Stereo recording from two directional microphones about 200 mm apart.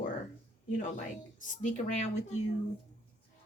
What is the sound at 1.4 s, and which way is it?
Speech, 40° left (ahead or behind).